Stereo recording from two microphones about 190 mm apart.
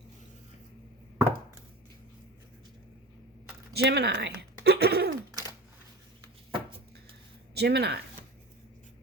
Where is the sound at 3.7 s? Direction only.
60° right (ahead or behind).